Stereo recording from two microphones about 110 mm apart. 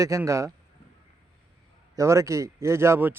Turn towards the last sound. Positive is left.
turn(degrees=-20)  # may be behind; listen again after turning